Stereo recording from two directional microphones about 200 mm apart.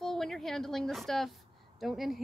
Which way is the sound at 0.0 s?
Centre (ahead or behind).